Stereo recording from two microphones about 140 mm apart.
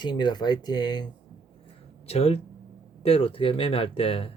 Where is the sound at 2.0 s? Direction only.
45° left (ahead or behind).